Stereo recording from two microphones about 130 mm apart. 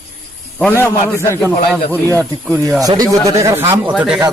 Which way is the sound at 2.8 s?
30° right (ahead or behind).